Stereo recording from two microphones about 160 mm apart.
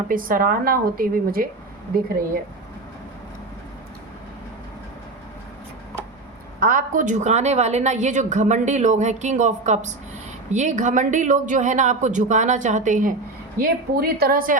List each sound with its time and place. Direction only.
0.1 s a woman's voice: 60° right (ahead or behind)
6.6 s a woman's voice: 60° right (ahead or behind)
13.6 s a woman's voice: 75° right (ahead or behind)